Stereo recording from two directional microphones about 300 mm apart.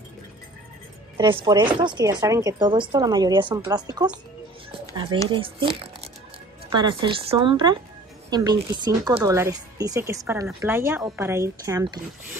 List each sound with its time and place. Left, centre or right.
1.1 s speech: centre